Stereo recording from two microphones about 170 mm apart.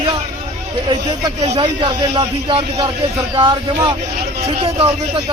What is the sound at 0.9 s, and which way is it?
A man's voice, 30° right (ahead or behind).